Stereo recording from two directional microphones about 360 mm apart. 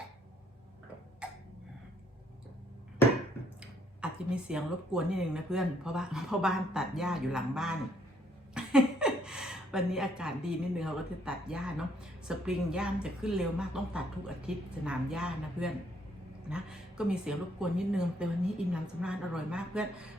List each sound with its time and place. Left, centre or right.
3.6 s speech: centre
8.5 s a sound: centre
10.8 s speech: centre